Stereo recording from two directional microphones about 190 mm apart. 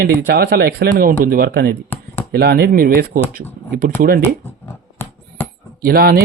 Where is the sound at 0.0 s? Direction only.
55° right (ahead or behind).